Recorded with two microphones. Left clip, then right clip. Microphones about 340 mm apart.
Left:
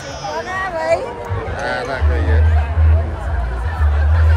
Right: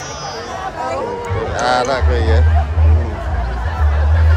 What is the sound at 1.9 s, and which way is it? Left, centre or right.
Speech, centre.